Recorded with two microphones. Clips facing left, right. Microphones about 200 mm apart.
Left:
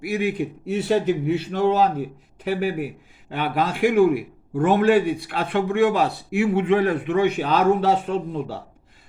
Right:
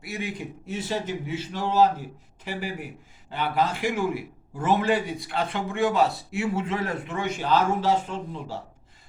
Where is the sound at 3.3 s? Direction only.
60° left (ahead or behind).